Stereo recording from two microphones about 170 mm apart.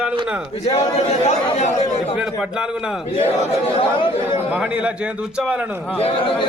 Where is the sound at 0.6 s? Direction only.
40° left (ahead or behind).